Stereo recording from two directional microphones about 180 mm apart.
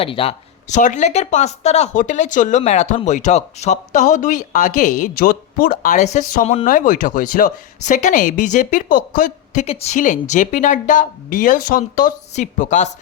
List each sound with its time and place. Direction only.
0.0 s speech: 30° left (ahead or behind)
6.7 s speech: 50° left (ahead or behind)